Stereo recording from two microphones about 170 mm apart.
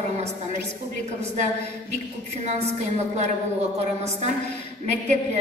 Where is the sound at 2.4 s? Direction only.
40° right (ahead or behind).